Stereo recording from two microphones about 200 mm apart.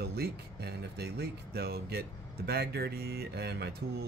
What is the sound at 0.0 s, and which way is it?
Speech, 55° right (ahead or behind).